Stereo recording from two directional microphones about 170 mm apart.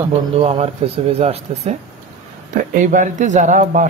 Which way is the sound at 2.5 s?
50° right (ahead or behind).